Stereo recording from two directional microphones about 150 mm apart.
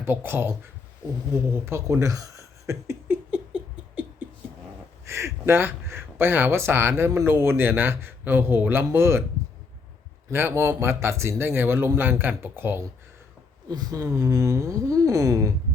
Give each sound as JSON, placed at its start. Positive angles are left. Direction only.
{"t": 0.0, "sound": "speech", "side_deg": -15}
{"t": 1.3, "sound": "a sound", "side_deg": -20}
{"t": 5.0, "sound": "speech", "side_deg": -20}
{"t": 10.2, "sound": "speech", "side_deg": -15}